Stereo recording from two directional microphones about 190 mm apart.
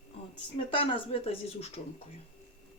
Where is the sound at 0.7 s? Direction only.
30° left (ahead or behind).